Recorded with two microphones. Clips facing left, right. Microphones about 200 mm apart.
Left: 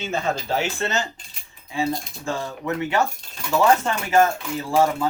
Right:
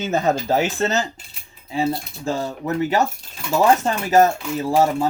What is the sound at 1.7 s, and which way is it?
Speech, 40° right (ahead or behind).